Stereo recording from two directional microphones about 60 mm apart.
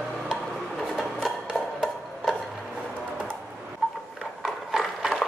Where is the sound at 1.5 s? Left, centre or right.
Centre.